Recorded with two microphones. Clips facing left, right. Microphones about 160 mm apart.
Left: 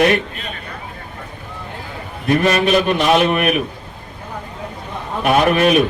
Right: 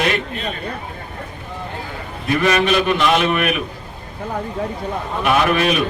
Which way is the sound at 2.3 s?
45° left (ahead or behind).